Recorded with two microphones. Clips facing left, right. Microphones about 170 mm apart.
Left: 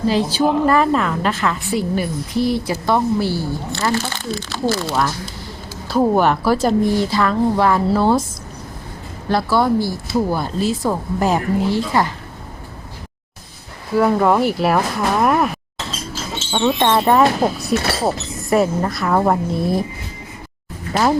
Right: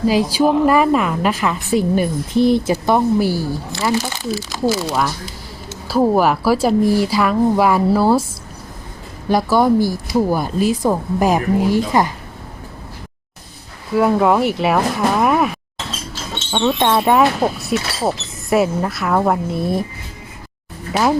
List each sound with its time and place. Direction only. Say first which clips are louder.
0.1 s a woman's voice: right 1 dB; 10° right (ahead or behind)
9.3 s speech: right 2 dB; 15° right (ahead or behind)
13.9 s speech: right 1 dB; centre (ahead or behind)
16.5 s speech: even; 5° left (ahead or behind)
17.7 s speech: left 2 dB; 55° left (ahead or behind)
18.0 s speech: even; centre (ahead or behind)